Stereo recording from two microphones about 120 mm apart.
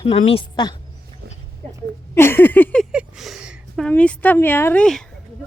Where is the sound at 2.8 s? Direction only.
5° right (ahead or behind).